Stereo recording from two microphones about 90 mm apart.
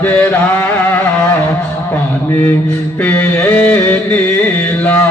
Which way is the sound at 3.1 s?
20° left (ahead or behind).